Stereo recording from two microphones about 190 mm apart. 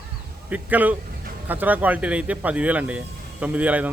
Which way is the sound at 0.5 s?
10° right (ahead or behind).